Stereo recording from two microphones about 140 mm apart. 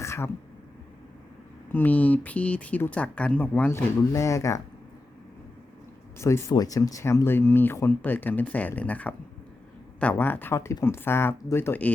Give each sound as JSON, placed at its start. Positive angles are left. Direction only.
{"t": 0.0, "sound": "a sound", "side_deg": 20}
{"t": 1.7, "sound": "speech", "side_deg": 10}
{"t": 6.1, "sound": "speech", "side_deg": 20}